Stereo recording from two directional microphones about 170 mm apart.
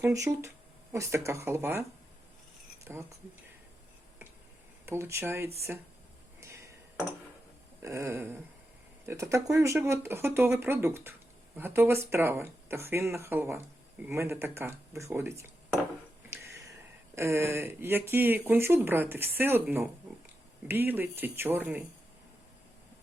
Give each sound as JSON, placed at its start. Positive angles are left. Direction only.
{"t": 0.0, "sound": "speech", "side_deg": -15}
{"t": 2.8, "sound": "speech", "side_deg": -15}
{"t": 4.9, "sound": "speech", "side_deg": -15}
{"t": 6.4, "sound": "a sound", "side_deg": -15}
{"t": 7.8, "sound": "speech", "side_deg": -15}
{"t": 16.3, "sound": "a sound", "side_deg": -15}
{"t": 17.2, "sound": "speech", "side_deg": -15}